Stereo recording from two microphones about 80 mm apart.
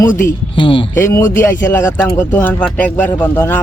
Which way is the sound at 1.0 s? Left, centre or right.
Left.